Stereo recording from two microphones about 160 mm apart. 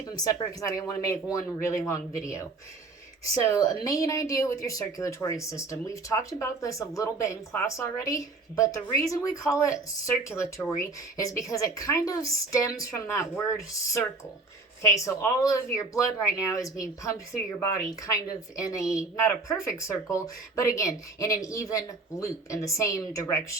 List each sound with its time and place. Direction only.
0.0 s speech: 25° left (ahead or behind)
3.4 s speech: 20° left (ahead or behind)
14.8 s speech: 20° left (ahead or behind)